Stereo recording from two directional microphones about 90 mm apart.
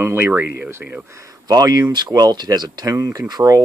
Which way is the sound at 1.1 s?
35° right (ahead or behind).